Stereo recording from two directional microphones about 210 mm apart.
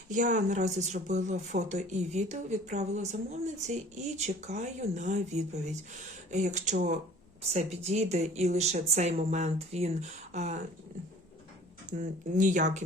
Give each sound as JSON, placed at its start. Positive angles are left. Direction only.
{"t": 0.1, "sound": "speech", "side_deg": -35}
{"t": 11.9, "sound": "speech", "side_deg": -35}